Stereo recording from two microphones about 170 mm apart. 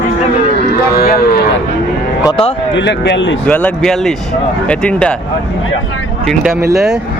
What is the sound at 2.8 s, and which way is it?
Speech, 90° left.